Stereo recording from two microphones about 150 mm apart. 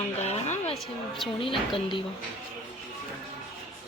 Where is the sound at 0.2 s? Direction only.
45° left (ahead or behind).